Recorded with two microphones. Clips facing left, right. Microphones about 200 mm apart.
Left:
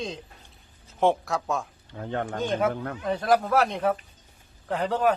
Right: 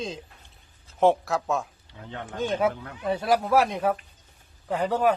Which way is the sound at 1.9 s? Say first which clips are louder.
Left 7 dB; 50° left (ahead or behind).